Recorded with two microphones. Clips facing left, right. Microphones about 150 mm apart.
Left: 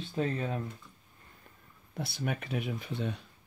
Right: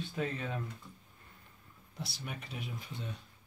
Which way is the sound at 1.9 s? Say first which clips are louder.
Left 9 dB; 55° left (ahead or behind).